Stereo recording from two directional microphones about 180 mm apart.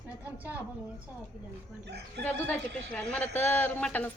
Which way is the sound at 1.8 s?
70° right (ahead or behind).